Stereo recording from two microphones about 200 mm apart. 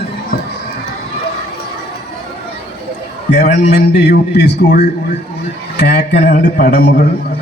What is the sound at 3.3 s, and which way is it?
Speech, 45° left (ahead or behind).